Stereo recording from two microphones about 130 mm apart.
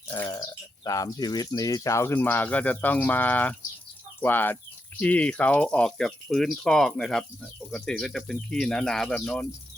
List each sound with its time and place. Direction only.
0.1 s speech: 25° left (ahead or behind); by 9.5 s 5° left (ahead or behind)